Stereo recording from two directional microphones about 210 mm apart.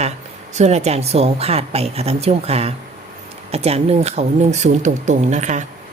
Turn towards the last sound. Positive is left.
turn(degrees=-35)  # may be behind; listen again after turning